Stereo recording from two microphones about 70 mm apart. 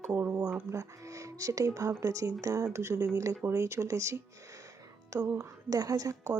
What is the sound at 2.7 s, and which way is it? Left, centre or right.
Speech, right.